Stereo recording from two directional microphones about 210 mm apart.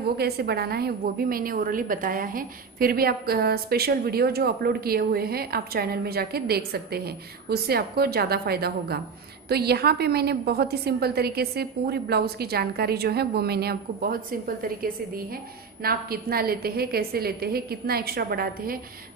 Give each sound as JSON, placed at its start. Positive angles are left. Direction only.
{"t": 0.2, "sound": "a woman's voice", "side_deg": -50}